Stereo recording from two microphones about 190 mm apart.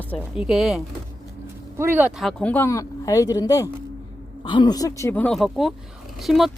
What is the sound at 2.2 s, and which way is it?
Speech, 5° left (ahead or behind).